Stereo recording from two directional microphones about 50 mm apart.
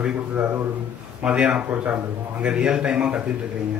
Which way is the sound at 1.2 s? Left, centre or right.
Right.